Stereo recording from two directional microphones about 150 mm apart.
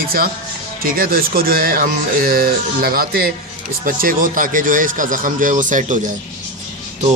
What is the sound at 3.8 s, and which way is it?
Speech, 70° right (ahead or behind).